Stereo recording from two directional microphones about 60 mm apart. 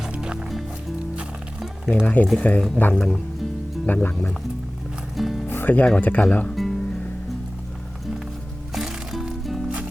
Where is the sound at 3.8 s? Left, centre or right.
Left.